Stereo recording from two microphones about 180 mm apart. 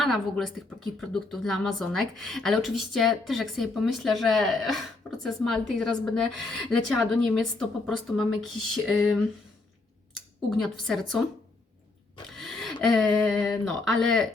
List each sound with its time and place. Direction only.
0.0 s a woman's voice: centre (ahead or behind)
10.6 s a woman's voice: centre (ahead or behind)
12.4 s speech: centre (ahead or behind)